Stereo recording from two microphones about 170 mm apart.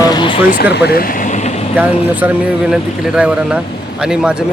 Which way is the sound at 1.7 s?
10° right (ahead or behind).